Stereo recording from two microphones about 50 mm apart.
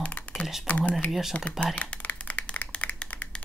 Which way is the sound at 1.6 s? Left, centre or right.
Left.